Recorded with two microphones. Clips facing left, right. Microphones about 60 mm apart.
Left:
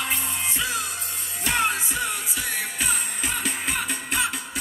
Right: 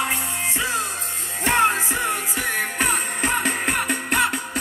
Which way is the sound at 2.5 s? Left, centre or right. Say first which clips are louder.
Right 6 dB; right.